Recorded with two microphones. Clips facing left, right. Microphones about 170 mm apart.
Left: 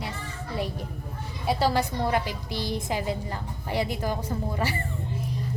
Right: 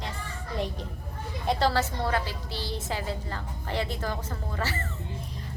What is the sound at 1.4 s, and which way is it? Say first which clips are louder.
A woman's voice: left 1 dB; 10° left (ahead or behind).